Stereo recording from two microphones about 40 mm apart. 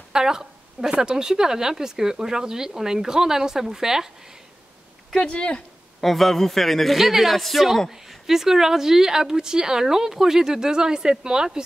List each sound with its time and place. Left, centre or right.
0.1 s a woman's voice: centre
5.2 s speech: left
5.9 s a man's voice: centre
7.0 s a man's voice: centre